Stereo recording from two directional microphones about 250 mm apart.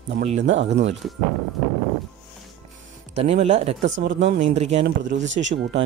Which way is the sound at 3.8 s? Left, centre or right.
Right.